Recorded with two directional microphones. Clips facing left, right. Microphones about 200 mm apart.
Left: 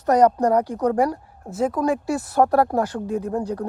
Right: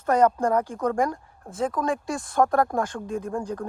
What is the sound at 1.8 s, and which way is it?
Speech, 5° left (ahead or behind).